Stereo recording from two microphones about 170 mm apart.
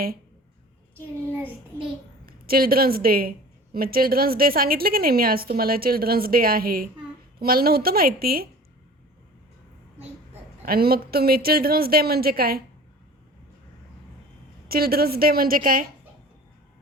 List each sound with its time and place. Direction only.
2.2 s a woman's voice: 60° right (ahead or behind)
10.7 s a woman's voice: 65° right (ahead or behind)
14.7 s a woman's voice: 65° right (ahead or behind)